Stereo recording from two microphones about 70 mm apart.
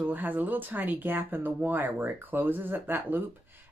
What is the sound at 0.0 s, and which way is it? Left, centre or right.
Speech, right.